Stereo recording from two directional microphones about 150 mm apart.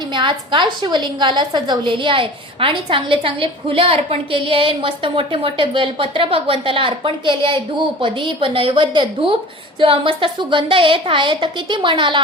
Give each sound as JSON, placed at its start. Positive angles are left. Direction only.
{"t": 0.1, "sound": "a woman's voice", "side_deg": -30}